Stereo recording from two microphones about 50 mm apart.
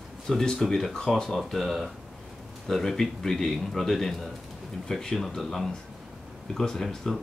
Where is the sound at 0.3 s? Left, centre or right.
Centre.